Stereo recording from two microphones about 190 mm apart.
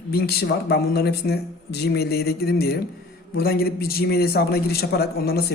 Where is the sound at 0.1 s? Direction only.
55° left (ahead or behind).